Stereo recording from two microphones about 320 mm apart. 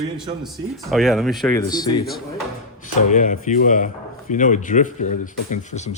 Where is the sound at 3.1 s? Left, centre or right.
Left.